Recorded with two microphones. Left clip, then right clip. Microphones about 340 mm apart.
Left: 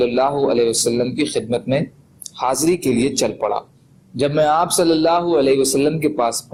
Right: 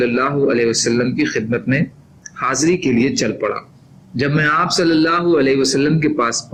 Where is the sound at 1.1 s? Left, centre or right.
Centre.